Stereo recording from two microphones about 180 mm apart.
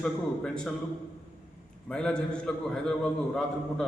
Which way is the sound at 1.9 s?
5° left (ahead or behind).